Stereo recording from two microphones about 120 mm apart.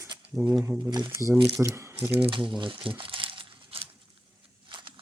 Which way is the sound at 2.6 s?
45° right (ahead or behind).